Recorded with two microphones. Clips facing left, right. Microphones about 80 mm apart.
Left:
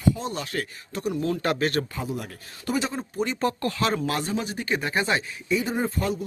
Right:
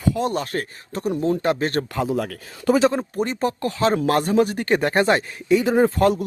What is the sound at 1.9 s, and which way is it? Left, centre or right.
Speech, right.